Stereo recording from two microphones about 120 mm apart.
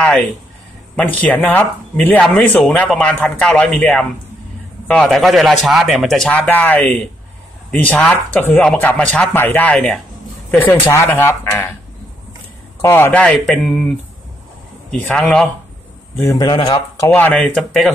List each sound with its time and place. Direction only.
0.9 s a man's voice: 15° left (ahead or behind)
10.6 s speech: 20° left (ahead or behind)
12.8 s speech: 20° left (ahead or behind)
13.2 s a man's voice: 5° left (ahead or behind)
15.0 s a man's voice: 5° left (ahead or behind)
16.3 s speech: 40° left (ahead or behind)
17.1 s speech: 10° left (ahead or behind)
17.6 s a man's voice: centre (ahead or behind)